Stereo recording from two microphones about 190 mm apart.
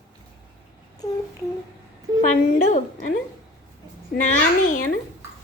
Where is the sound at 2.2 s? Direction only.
40° left (ahead or behind).